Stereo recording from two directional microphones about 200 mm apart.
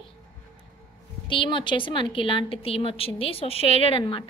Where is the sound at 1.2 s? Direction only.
25° left (ahead or behind).